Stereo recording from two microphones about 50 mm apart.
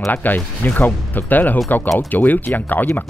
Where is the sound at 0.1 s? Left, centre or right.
Left.